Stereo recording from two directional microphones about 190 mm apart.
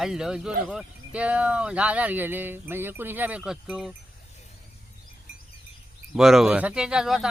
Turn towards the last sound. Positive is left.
turn(degrees=0)  # may be behind; listen again after turning